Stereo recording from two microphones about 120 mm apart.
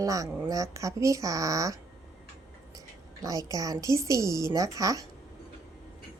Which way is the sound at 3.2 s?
30° right (ahead or behind).